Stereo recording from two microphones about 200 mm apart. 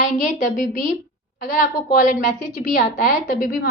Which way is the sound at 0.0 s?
40° left (ahead or behind).